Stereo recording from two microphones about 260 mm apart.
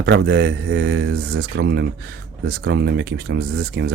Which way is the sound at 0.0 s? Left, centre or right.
Right.